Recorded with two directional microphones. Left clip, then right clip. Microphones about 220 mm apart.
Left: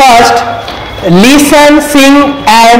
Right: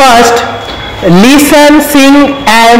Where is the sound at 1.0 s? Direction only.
30° right (ahead or behind).